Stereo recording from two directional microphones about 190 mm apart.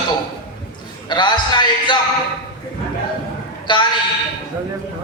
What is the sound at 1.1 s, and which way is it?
Speech, 25° left (ahead or behind).